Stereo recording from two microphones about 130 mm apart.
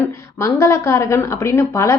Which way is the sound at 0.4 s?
20° left (ahead or behind).